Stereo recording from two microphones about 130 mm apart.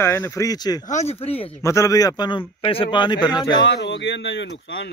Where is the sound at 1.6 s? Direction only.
25° left (ahead or behind).